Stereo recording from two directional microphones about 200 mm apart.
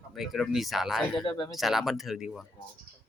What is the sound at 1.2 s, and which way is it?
Speech, 25° left (ahead or behind).